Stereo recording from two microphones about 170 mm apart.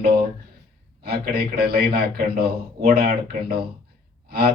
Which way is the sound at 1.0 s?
65° right (ahead or behind).